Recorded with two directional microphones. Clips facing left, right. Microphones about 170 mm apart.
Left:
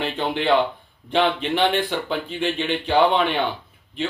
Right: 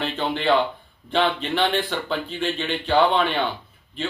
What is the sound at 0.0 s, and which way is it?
Speech, 15° left (ahead or behind).